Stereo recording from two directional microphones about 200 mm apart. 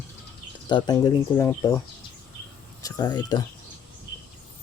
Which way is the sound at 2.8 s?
20° left (ahead or behind).